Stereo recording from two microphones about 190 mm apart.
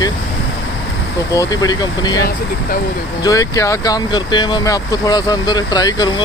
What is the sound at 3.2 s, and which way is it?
Speech, 20° left (ahead or behind).